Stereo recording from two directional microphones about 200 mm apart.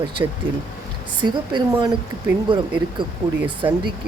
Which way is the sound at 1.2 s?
25° right (ahead or behind).